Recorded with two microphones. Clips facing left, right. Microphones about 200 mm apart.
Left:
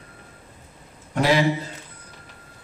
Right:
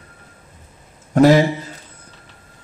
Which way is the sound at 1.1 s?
45° right (ahead or behind).